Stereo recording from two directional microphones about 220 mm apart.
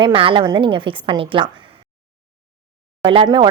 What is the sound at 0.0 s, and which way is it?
A woman's voice, 25° right (ahead or behind).